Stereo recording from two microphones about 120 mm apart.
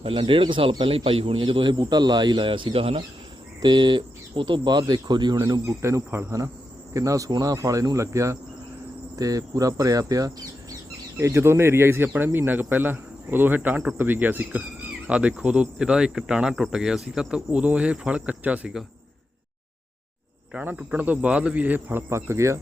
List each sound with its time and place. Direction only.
0.0 s speech: 45° right (ahead or behind); by 6.5 s 25° right (ahead or behind)
6.9 s cricket: 25° right (ahead or behind)
11.2 s speech: 25° right (ahead or behind); by 18.9 s 5° right (ahead or behind)
20.5 s speech: 10° right (ahead or behind)